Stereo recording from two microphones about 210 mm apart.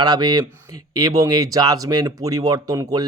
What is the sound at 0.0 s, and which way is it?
Speech, 20° right (ahead or behind).